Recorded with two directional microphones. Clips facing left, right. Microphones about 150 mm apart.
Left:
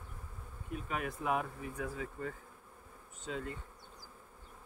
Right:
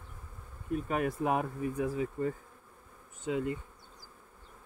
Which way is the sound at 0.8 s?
40° right (ahead or behind).